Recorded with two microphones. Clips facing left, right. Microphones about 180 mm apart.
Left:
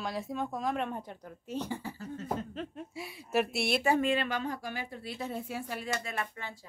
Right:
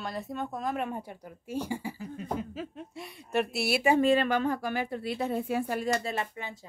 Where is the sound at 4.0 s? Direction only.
40° right (ahead or behind).